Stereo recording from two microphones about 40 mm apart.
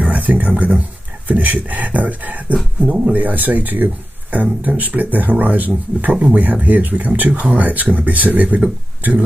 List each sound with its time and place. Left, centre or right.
0.1 s speech: right